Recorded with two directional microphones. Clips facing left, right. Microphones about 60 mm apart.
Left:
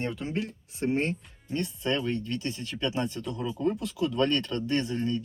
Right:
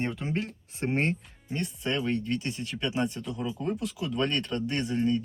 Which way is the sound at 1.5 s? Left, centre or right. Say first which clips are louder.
Left 2 dB; right.